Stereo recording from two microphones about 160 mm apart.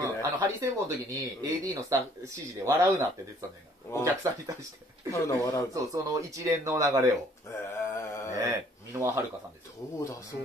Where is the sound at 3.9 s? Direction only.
15° left (ahead or behind).